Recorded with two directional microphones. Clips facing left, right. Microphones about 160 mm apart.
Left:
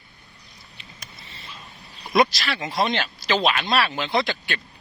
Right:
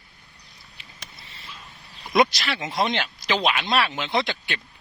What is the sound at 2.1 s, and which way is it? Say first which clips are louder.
A man's voice: even; 20° right (ahead or behind).